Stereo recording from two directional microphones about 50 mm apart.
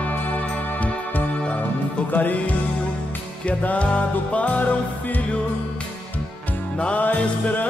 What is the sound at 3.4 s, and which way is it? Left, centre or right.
Music, left.